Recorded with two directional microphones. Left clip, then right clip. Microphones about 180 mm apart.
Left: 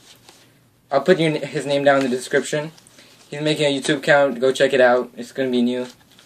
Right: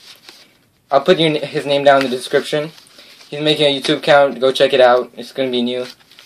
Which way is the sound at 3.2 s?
15° left (ahead or behind).